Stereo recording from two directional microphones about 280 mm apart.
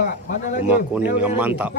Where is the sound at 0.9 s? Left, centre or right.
Centre.